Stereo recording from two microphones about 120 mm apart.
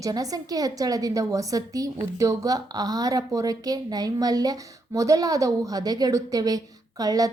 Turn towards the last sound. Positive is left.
turn(degrees=-30)  # may be behind; listen again after turning